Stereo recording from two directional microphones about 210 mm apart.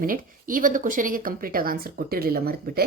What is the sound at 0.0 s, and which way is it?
Speech, 40° right (ahead or behind).